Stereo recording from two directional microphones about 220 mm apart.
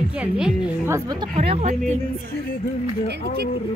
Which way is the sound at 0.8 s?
15° right (ahead or behind).